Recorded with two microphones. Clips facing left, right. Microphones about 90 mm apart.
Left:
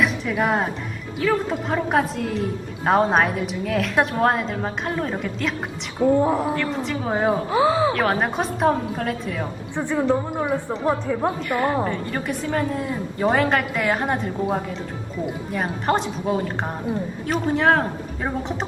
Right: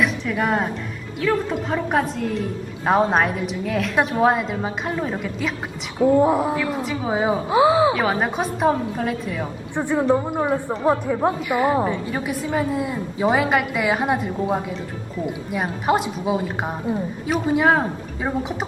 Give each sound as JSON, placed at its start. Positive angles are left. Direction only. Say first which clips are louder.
{"t": 0.0, "sound": "a woman's voice", "louder": "even", "side_deg": 0}
{"t": 7.9, "sound": "a woman's voice", "louder": "even", "side_deg": 0}
{"t": 9.7, "sound": "a woman's voice", "louder": "right 2 dB", "side_deg": -15}